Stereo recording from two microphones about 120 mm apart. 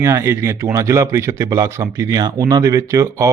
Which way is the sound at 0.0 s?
20° right (ahead or behind).